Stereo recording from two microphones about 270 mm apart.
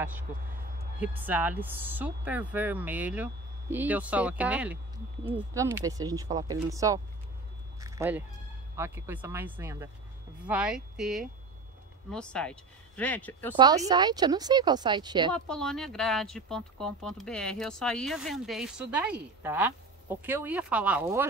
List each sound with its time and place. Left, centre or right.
1.0 s speech: centre
13.6 s speech: centre
15.3 s speech: centre